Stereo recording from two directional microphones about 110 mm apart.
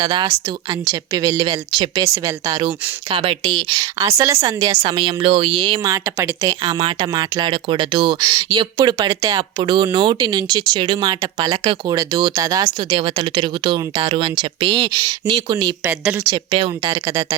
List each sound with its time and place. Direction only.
0.0 s speech: 45° right (ahead or behind)
2.1 s speech: 30° right (ahead or behind)
3.1 s speech: 55° right (ahead or behind)
3.9 s speech: 25° right (ahead or behind)
4.8 s speech: 50° right (ahead or behind)
6.1 s speech: 20° right (ahead or behind)
6.6 s speech: 40° right (ahead or behind)
9.4 s speech: 45° right (ahead or behind)
15.8 s speech: 20° right (ahead or behind)
16.3 s speech: 50° right (ahead or behind)